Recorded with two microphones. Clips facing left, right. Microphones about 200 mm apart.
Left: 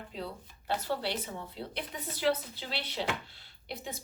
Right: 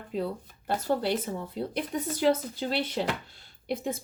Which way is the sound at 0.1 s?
50° right (ahead or behind).